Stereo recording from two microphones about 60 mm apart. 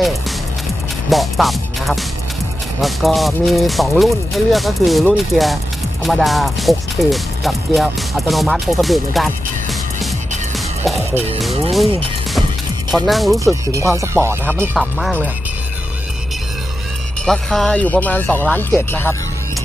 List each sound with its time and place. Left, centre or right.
1.1 s speech: centre
11.4 s speech: centre
12.9 s speech: centre
13.7 s speech: right
14.7 s speech: centre
17.3 s speech: centre
17.6 s speech: left